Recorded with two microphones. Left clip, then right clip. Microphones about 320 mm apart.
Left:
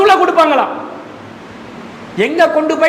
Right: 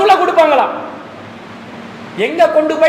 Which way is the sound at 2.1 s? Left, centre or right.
Left.